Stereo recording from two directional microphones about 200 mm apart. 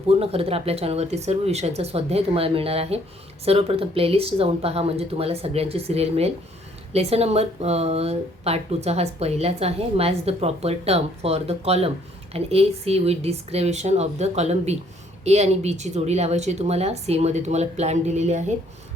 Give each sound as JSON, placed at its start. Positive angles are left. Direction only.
{"t": 0.1, "sound": "speech", "side_deg": -30}